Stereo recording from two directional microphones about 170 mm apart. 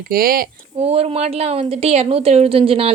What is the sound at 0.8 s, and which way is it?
A woman's voice, 40° right (ahead or behind).